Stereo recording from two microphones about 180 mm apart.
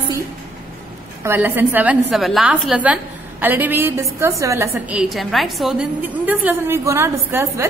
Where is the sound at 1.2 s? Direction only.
10° right (ahead or behind).